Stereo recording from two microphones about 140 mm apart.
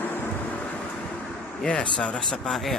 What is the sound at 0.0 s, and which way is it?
Thunder, 15° left (ahead or behind).